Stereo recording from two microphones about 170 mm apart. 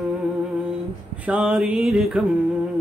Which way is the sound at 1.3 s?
5° right (ahead or behind).